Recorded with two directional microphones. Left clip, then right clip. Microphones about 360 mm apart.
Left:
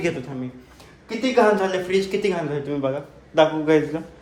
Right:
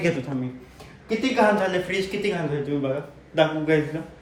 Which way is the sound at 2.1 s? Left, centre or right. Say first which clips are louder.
Left 3 dB; centre.